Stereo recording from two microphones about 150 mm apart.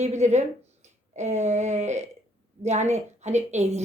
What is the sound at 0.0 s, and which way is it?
A woman's voice, 50° right (ahead or behind).